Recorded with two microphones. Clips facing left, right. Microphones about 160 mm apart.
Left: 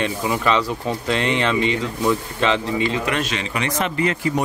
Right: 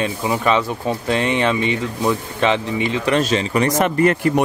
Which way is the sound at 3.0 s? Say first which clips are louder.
Right 6 dB; 35° right (ahead or behind).